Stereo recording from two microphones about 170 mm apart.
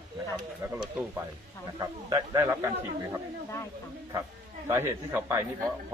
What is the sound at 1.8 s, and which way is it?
Speech, 20° right (ahead or behind).